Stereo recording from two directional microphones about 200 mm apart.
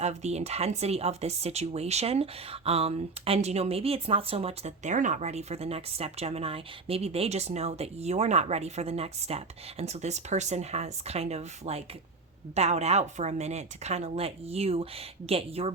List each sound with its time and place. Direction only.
0.0 s a woman's voice: 35° right (ahead or behind)